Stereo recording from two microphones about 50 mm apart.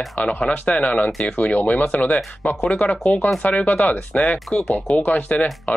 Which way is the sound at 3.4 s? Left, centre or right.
Left.